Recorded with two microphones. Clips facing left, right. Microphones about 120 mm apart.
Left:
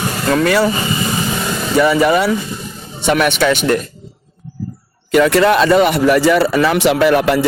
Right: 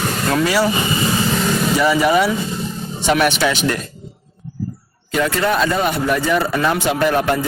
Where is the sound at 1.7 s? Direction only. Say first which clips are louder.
Left 4 dB; 60° left (ahead or behind).